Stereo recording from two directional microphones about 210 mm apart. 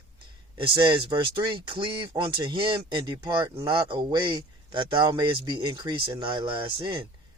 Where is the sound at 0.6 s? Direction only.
20° right (ahead or behind).